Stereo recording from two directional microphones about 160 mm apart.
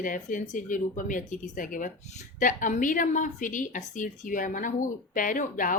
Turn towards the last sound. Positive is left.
turn(degrees=55)  # may be behind; listen again after turning